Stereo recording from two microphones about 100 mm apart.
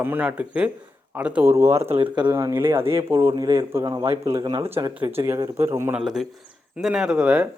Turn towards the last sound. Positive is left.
turn(degrees=-10)  # may be behind; listen again after turning